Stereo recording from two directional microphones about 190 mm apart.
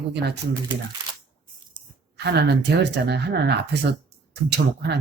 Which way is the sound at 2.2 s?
60° right (ahead or behind).